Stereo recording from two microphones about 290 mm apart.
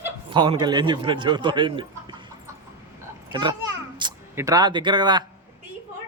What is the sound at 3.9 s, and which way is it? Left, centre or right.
Speech, centre.